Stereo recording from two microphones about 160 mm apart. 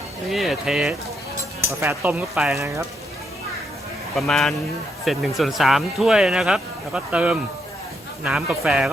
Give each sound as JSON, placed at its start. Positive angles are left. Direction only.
{"t": 0.3, "sound": "speech", "side_deg": 0}
{"t": 1.6, "sound": "speech", "side_deg": -15}
{"t": 4.1, "sound": "speech", "side_deg": 0}